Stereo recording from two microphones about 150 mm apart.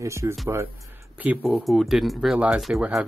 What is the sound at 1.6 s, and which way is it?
Speech, centre (ahead or behind).